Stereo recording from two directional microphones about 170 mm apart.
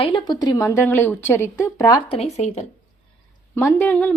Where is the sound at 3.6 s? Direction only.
15° left (ahead or behind).